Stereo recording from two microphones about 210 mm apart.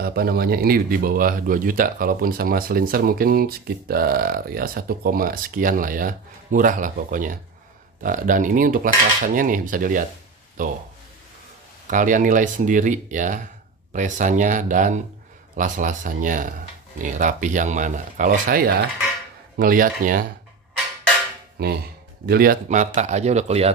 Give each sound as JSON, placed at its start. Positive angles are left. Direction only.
{"t": 0.0, "sound": "speech", "side_deg": -45}
{"t": 8.0, "sound": "cutlery", "side_deg": -40}
{"t": 11.9, "sound": "cutlery", "side_deg": -40}
{"t": 21.6, "sound": "speech", "side_deg": -50}
{"t": 22.8, "sound": "cutlery", "side_deg": -35}